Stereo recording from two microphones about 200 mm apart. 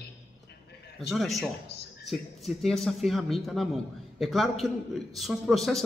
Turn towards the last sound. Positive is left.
turn(degrees=0)  # may be behind; listen again after turning